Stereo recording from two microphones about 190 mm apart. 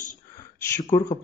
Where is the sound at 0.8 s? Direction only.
20° left (ahead or behind).